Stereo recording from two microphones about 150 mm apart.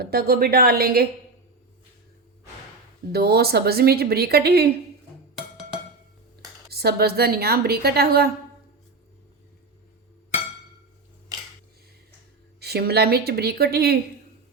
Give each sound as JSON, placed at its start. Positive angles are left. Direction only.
{"t": 0.0, "sound": "a woman's voice", "side_deg": -90}
{"t": 3.1, "sound": "a woman's voice", "side_deg": -90}
{"t": 6.7, "sound": "a woman's voice", "side_deg": -90}
{"t": 12.5, "sound": "a woman's voice", "side_deg": -90}